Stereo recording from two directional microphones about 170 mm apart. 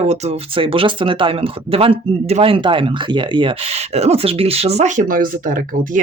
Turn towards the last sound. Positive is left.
turn(degrees=-50)  # may be behind; listen again after turning